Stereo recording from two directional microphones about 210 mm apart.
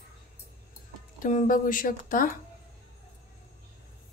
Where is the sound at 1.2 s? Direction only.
40° left (ahead or behind).